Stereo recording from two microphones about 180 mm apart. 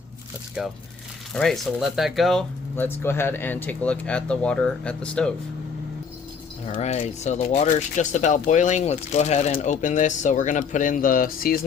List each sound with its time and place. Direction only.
0.6 s speech: 5° right (ahead or behind)
2.7 s speech: 10° left (ahead or behind)
6.7 s speech: 40° left (ahead or behind)